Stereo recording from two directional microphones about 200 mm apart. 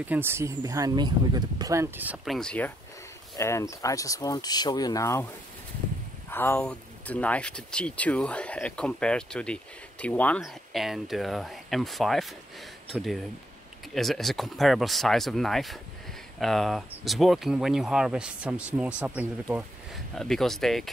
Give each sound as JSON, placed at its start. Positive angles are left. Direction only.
{"t": 0.0, "sound": "speech", "side_deg": -10}
{"t": 6.3, "sound": "speech", "side_deg": 10}